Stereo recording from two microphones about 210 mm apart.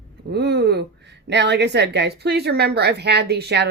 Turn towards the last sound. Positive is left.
turn(degrees=-50)  # may be behind; listen again after turning